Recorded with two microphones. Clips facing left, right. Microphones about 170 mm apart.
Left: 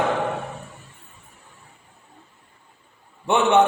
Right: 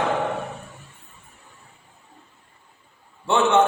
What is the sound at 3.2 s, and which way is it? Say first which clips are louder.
Speech: left 1 dB; 15° left (ahead or behind).